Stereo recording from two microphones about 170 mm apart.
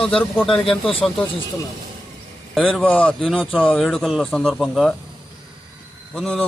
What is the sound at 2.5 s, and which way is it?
A man's voice, 5° left (ahead or behind).